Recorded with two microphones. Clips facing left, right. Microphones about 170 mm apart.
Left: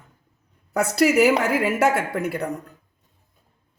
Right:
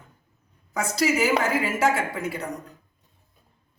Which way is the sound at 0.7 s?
65° left (ahead or behind).